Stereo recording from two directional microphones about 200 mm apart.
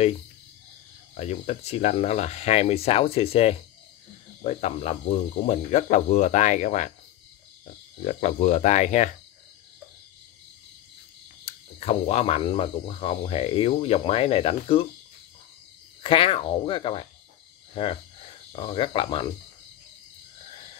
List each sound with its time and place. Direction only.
1.1 s speech: 30° left (ahead or behind)
11.4 s speech: 30° left (ahead or behind)
16.0 s speech: 25° left (ahead or behind)
18.6 s speech: 25° left (ahead or behind)